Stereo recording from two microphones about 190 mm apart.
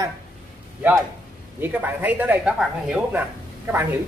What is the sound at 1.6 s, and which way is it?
Speech, 10° right (ahead or behind).